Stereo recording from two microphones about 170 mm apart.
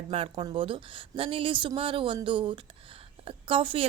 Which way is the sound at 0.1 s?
35° right (ahead or behind).